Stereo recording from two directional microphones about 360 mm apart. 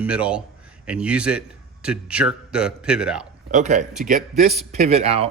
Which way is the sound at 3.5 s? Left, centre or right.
Centre.